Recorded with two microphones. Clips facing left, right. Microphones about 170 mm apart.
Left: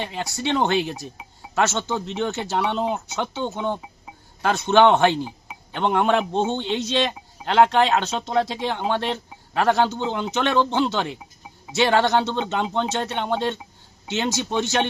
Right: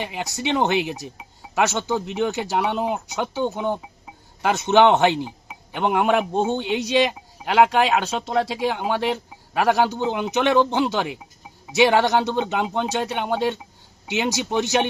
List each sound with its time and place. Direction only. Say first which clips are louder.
0.0 s a man's voice: even; 15° right (ahead or behind)